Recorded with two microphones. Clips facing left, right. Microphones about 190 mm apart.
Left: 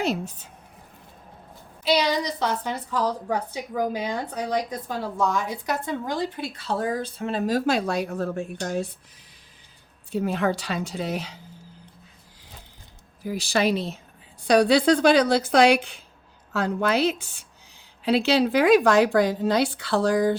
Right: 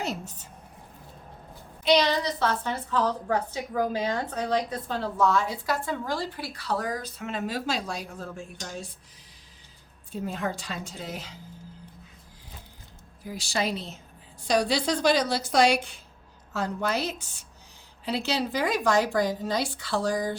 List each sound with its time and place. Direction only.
1.8 s a woman's voice: 5° left (ahead or behind); by 7.6 s 35° left (ahead or behind)
7.7 s a woman's voice: 60° left (ahead or behind)
10.1 s a woman's voice: 75° left (ahead or behind)
13.2 s a woman's voice: 65° left (ahead or behind)